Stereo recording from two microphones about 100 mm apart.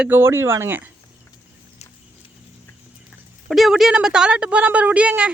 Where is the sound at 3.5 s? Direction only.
Centre (ahead or behind).